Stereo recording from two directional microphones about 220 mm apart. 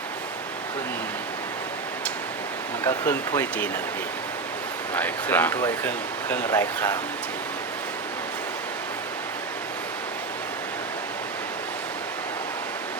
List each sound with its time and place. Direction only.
2.8 s speech: 10° left (ahead or behind)
4.9 s speech: 10° left (ahead or behind)